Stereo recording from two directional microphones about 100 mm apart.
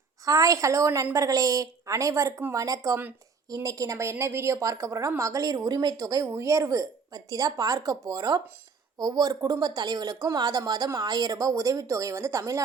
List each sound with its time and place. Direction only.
0.3 s speech: 35° right (ahead or behind)
6.2 s speech: 30° right (ahead or behind)